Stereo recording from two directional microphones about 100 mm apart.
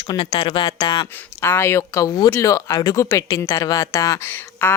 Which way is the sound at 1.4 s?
25° left (ahead or behind).